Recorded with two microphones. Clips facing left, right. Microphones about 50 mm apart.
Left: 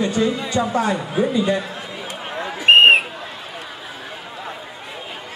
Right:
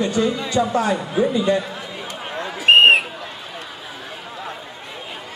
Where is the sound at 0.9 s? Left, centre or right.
Centre.